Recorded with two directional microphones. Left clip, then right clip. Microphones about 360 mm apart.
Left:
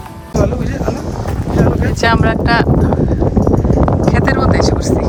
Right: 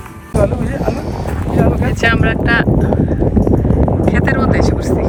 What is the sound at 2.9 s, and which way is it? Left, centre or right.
Clip-clop, centre.